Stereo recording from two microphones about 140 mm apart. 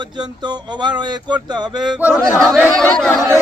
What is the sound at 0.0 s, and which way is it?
Speech, 30° right (ahead or behind).